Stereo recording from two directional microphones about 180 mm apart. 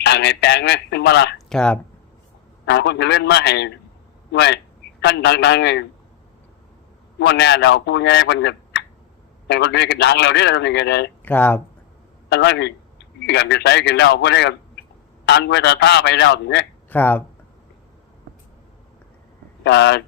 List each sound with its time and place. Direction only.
0.0 s a man's voice: 70° left (ahead or behind)
1.5 s speech: 5° left (ahead or behind)
2.6 s a man's voice: 70° left (ahead or behind)
7.2 s a man's voice: 70° left (ahead or behind)
11.3 s speech: 10° left (ahead or behind)
12.3 s a man's voice: 70° left (ahead or behind)
16.9 s speech: 10° left (ahead or behind)
19.6 s a man's voice: 75° left (ahead or behind)